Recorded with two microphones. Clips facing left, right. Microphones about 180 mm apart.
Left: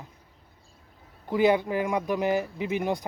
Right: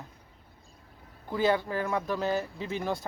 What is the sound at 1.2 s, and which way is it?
Speech, 20° left (ahead or behind).